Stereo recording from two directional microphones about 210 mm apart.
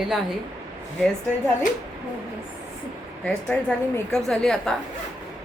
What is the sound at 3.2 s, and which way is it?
Speech, 5° left (ahead or behind).